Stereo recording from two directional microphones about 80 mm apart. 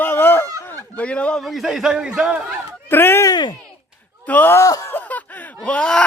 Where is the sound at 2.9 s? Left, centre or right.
Left.